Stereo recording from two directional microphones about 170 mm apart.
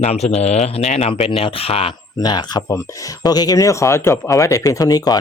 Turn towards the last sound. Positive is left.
turn(degrees=20)  # may be behind; listen again after turning